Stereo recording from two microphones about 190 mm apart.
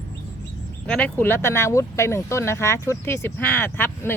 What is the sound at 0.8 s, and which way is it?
Speech, 5° left (ahead or behind).